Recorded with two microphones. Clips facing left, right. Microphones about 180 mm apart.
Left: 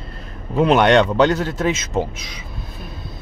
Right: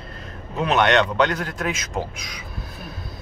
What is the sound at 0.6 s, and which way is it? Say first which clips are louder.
A man's voice: left 5 dB; 30° left (ahead or behind).